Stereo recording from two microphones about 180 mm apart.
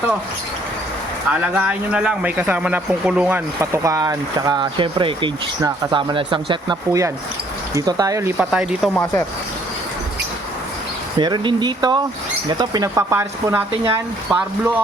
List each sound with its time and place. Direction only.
1.3 s speech: 5° right (ahead or behind)
8.4 s speech: 5° right (ahead or behind)
11.2 s speech: 25° right (ahead or behind)